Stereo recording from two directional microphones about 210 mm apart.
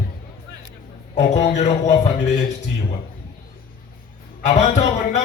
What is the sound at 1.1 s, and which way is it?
A man's voice, 35° left (ahead or behind).